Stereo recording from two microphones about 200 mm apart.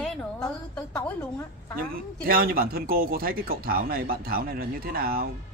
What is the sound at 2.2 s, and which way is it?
A man's voice, 50° right (ahead or behind).